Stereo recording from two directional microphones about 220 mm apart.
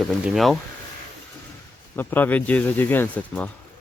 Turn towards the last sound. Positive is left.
turn(degrees=5)  # may be behind; listen again after turning